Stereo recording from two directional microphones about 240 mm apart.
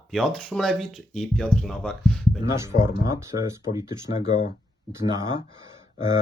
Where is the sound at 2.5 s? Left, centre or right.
Centre.